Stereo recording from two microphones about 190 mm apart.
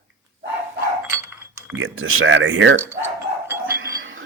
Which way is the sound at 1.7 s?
90° right.